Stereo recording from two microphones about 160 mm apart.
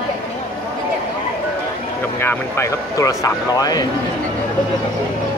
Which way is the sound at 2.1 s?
15° left (ahead or behind).